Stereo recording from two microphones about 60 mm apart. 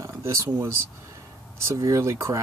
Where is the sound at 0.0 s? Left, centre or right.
Right.